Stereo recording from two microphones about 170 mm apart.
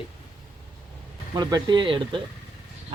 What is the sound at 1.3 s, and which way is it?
Speech, 25° right (ahead or behind).